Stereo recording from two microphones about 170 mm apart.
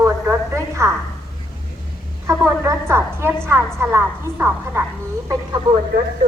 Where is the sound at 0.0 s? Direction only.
15° right (ahead or behind).